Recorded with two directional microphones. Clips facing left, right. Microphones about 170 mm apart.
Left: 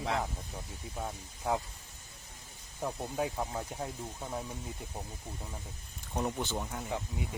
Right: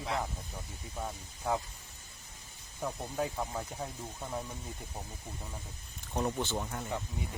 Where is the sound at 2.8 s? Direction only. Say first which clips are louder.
Left 1 dB; 10° left (ahead or behind).